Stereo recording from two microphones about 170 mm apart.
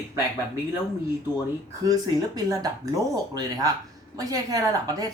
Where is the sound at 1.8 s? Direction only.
20° right (ahead or behind).